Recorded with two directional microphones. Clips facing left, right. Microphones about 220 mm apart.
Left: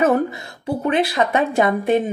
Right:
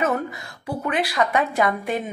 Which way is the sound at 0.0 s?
25° left (ahead or behind).